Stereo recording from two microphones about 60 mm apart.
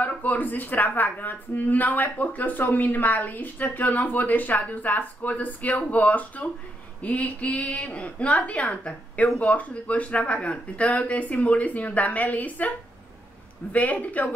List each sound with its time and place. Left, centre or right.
0.0 s a woman's voice: left